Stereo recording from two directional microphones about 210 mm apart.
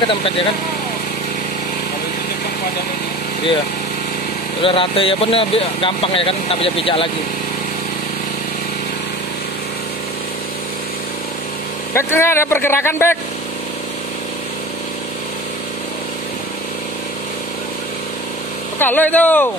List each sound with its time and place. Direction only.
0.1 s speech: 25° left (ahead or behind)
4.6 s speech: 25° left (ahead or behind)
11.9 s speech: 10° left (ahead or behind)
18.8 s speech: 10° left (ahead or behind)